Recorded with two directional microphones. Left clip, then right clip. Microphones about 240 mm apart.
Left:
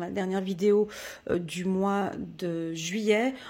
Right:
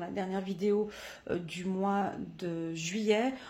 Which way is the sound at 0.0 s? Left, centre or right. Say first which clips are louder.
Left 5 dB; left.